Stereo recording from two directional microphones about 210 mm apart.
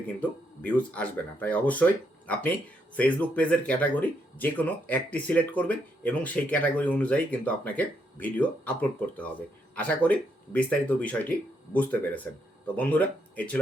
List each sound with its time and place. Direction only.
0.2 s speech: 5° left (ahead or behind)